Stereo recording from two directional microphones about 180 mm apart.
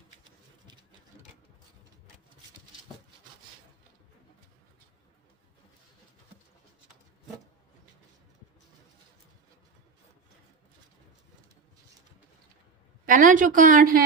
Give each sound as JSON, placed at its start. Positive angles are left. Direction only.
{"t": 13.1, "sound": "a woman's voice", "side_deg": -50}